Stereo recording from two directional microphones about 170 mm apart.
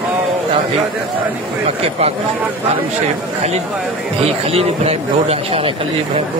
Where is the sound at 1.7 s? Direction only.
35° right (ahead or behind).